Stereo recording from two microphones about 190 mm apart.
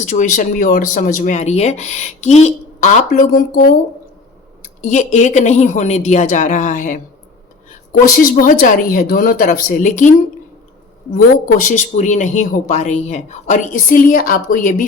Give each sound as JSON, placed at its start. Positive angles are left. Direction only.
{"t": 0.0, "sound": "speech", "side_deg": 40}
{"t": 8.2, "sound": "a woman's voice", "side_deg": 50}
{"t": 11.7, "sound": "speech", "side_deg": 40}